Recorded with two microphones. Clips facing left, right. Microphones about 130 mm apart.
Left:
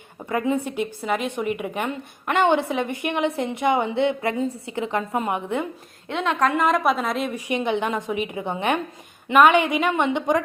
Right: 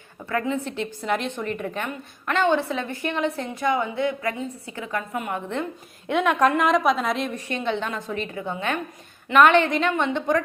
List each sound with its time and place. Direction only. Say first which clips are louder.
0.3 s a woman's voice: left 3 dB; 15° left (ahead or behind)
6.4 s a woman's voice: left 1 dB; centre (ahead or behind)
7.3 s a woman's voice: left 3 dB; 15° left (ahead or behind)
9.3 s a woman's voice: left 1 dB; 10° left (ahead or behind)